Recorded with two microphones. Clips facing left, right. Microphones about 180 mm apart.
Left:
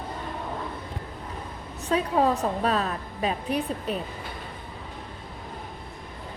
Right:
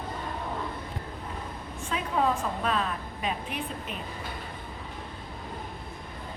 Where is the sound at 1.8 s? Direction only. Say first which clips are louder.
Left 5 dB; 40° left (ahead or behind).